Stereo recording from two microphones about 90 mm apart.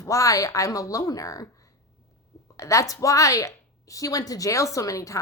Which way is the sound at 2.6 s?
35° left (ahead or behind).